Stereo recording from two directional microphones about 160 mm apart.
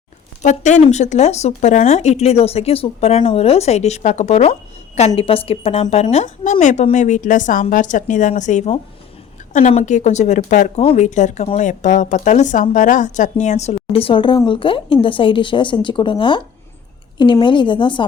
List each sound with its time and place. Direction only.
0.4 s a woman's voice: 45° left (ahead or behind); by 18.0 s 30° left (ahead or behind)